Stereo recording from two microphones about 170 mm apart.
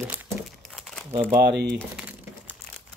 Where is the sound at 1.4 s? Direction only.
75° right (ahead or behind).